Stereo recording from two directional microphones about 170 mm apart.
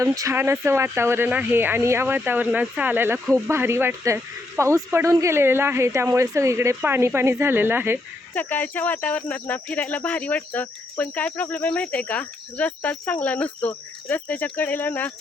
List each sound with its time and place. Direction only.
0.0 s speech: 20° right (ahead or behind)
8.4 s speech: 10° left (ahead or behind)